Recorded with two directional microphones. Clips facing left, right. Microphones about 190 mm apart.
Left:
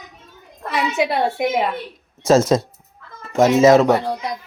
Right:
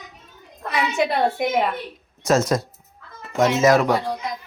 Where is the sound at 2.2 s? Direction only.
30° left (ahead or behind).